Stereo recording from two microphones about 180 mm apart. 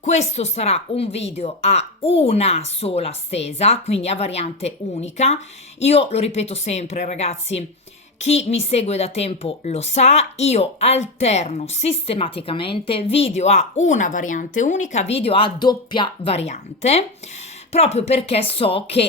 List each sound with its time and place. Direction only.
0.0 s a woman's voice: 40° left (ahead or behind)